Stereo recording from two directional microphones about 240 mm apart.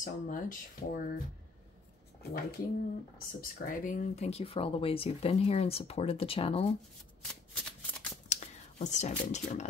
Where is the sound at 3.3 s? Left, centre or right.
Left.